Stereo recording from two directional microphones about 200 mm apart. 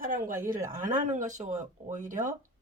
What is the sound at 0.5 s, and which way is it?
A woman's voice, 40° right (ahead or behind).